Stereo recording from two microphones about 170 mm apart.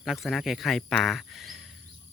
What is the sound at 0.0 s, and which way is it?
Speech, centre (ahead or behind).